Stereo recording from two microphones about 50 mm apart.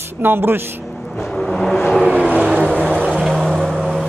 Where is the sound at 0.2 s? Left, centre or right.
Right.